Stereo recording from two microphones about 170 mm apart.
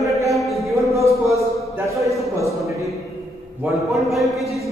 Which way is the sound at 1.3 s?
15° right (ahead or behind).